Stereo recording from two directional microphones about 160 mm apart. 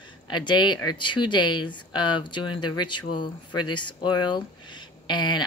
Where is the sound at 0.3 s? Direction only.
30° left (ahead or behind).